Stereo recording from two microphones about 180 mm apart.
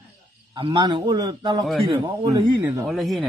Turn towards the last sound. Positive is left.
turn(degrees=0)  # may be behind; listen again after turning